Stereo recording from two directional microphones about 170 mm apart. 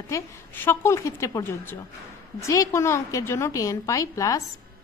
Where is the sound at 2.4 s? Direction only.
15° left (ahead or behind).